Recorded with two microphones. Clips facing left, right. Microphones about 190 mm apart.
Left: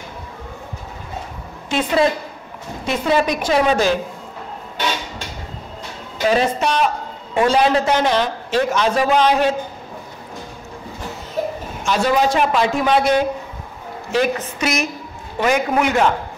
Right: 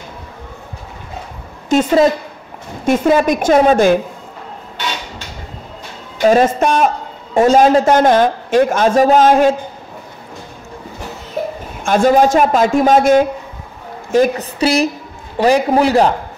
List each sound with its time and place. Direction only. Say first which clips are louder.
1.7 s a woman's voice: right 6 dB; 45° right (ahead or behind)
6.2 s a man's voice: right 6 dB; 45° right (ahead or behind)
11.8 s a man's voice: right 6 dB; 50° right (ahead or behind); by 16.1 s 35° right (ahead or behind)